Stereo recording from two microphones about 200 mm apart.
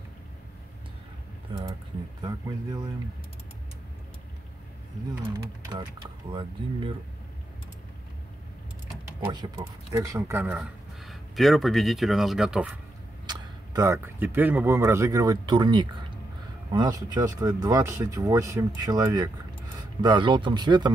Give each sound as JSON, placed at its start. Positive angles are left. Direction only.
{"t": 2.2, "sound": "speech", "side_deg": -20}
{"t": 9.3, "sound": "speech", "side_deg": -20}
{"t": 10.4, "sound": "speech", "side_deg": 0}
{"t": 13.3, "sound": "speech", "side_deg": -15}